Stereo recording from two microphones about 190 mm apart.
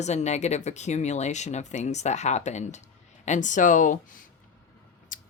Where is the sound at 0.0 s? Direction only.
35° left (ahead or behind).